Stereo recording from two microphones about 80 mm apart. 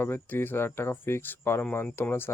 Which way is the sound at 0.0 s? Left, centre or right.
Left.